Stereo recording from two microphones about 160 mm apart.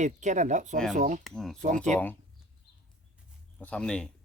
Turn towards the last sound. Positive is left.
turn(degrees=5)  # may be behind; listen again after turning